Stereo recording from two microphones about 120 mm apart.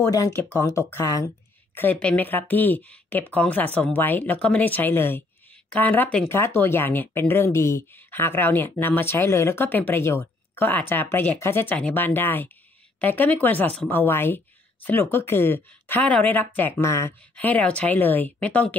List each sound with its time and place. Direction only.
0.0 s speech: 25° left (ahead or behind)
1.8 s speech: 15° left (ahead or behind)